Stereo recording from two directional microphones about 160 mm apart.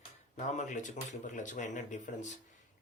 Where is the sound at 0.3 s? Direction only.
45° left (ahead or behind).